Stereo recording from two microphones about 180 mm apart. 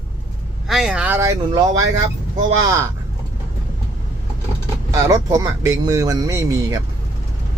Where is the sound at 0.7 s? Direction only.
5° right (ahead or behind).